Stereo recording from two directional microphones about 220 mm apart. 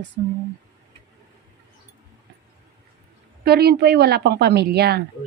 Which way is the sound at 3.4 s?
45° right (ahead or behind).